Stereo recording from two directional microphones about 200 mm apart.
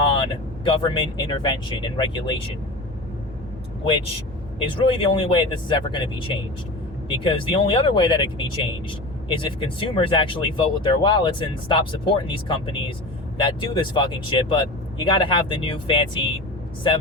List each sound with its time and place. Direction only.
0.6 s speech: 25° left (ahead or behind)
4.8 s speech: 25° left (ahead or behind)